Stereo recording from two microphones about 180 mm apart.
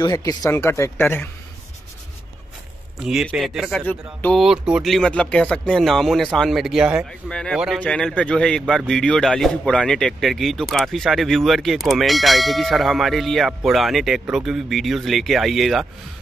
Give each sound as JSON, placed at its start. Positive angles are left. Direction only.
{"t": 0.0, "sound": "speech", "side_deg": 20}
{"t": 3.0, "sound": "speech", "side_deg": -5}
{"t": 4.4, "sound": "speech", "side_deg": -5}